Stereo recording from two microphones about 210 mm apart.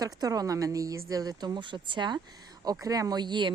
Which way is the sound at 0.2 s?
15° right (ahead or behind).